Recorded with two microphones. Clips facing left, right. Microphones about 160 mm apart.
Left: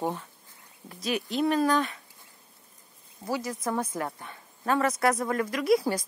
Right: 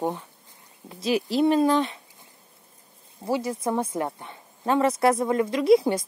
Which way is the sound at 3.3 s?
25° right (ahead or behind).